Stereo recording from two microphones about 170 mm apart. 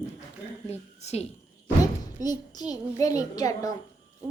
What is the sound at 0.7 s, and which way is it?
Speech, 40° left (ahead or behind).